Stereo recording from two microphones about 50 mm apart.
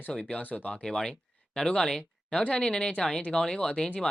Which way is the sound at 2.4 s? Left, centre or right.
Centre.